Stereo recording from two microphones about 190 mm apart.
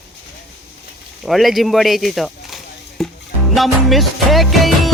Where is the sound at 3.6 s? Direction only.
Centre (ahead or behind).